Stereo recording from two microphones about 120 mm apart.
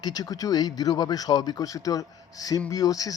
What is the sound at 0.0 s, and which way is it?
A man's voice, 35° left (ahead or behind).